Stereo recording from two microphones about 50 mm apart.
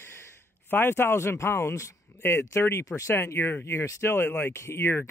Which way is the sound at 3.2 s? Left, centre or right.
Left.